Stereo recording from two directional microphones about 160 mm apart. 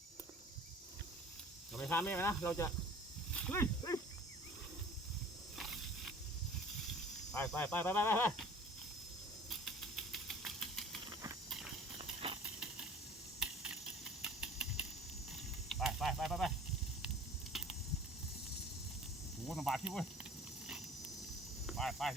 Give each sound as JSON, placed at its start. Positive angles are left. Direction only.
{"t": 1.9, "sound": "speech", "side_deg": 15}
{"t": 3.3, "sound": "wild animals", "side_deg": 10}
{"t": 5.5, "sound": "a sound", "side_deg": 0}
{"t": 7.3, "sound": "speech", "side_deg": 15}
{"t": 9.5, "sound": "a sound", "side_deg": 0}
{"t": 11.4, "sound": "clip-clop", "side_deg": 0}
{"t": 11.9, "sound": "horse", "side_deg": -35}
{"t": 13.4, "sound": "computer keyboard", "side_deg": -5}
{"t": 14.2, "sound": "a sound", "side_deg": -5}
{"t": 15.3, "sound": "goose", "side_deg": 0}
{"t": 17.5, "sound": "a sound", "side_deg": 0}
{"t": 19.5, "sound": "speech", "side_deg": 0}
{"t": 21.7, "sound": "speech", "side_deg": 0}